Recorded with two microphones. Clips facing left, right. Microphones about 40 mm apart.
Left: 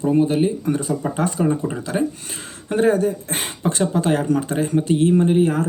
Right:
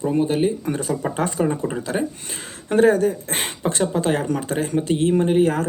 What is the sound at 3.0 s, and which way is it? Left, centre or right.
Speech, right.